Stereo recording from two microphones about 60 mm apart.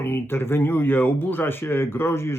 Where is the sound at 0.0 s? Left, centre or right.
Left.